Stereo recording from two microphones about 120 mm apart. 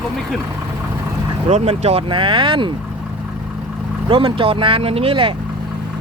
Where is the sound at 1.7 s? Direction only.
55° right (ahead or behind).